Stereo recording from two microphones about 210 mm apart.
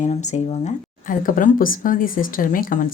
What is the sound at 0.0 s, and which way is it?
Speech, 35° left (ahead or behind).